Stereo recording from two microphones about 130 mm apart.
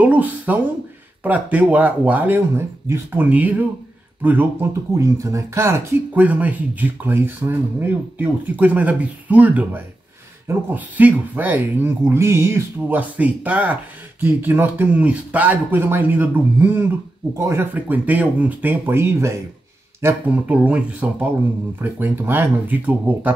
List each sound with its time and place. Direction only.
0.0 s speech: 10° right (ahead or behind)
20.5 s speech: 10° right (ahead or behind)